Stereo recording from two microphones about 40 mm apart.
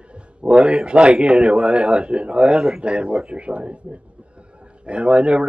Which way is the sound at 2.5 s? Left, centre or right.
Centre.